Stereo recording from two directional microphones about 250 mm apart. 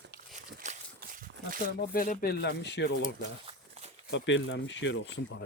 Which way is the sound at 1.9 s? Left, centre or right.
Left.